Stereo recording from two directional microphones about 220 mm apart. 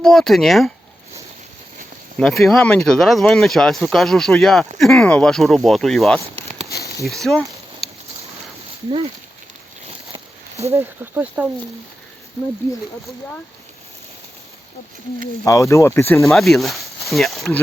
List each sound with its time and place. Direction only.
0.0 s speech: centre (ahead or behind)
2.1 s speech: centre (ahead or behind)
8.9 s speech: 25° right (ahead or behind)
10.7 s speech: 10° right (ahead or behind)
15.4 s speech: 15° left (ahead or behind)
16.3 s speech: centre (ahead or behind)